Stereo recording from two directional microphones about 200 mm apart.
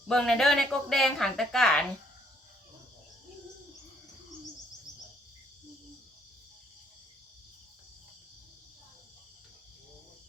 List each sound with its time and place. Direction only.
0.1 s a woman's voice: centre (ahead or behind)